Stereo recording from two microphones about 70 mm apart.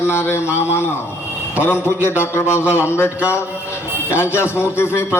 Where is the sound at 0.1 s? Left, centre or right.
Left.